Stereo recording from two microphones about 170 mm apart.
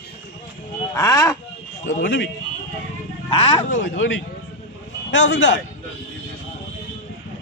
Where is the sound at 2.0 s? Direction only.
90° left.